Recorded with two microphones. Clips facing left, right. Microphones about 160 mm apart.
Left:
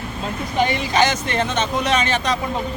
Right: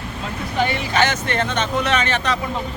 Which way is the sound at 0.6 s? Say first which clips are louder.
Left 1 dB; 15° left (ahead or behind).